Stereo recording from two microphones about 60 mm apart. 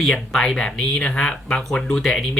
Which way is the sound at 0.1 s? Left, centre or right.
Centre.